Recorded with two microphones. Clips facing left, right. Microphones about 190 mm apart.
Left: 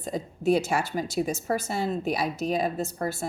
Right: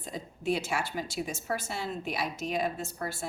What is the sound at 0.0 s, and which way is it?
A woman's voice, 45° left (ahead or behind).